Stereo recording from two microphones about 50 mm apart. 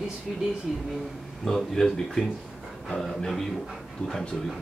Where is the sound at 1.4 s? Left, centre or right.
Centre.